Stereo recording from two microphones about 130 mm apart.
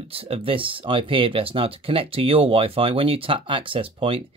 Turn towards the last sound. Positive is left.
turn(degrees=-45)  # may be behind; listen again after turning